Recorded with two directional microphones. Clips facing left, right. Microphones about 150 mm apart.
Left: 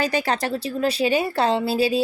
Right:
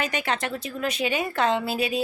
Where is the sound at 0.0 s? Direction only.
35° left (ahead or behind).